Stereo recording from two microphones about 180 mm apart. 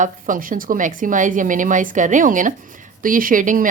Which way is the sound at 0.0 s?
50° right (ahead or behind).